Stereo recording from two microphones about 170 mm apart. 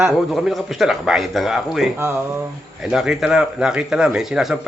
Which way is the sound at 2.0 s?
15° right (ahead or behind).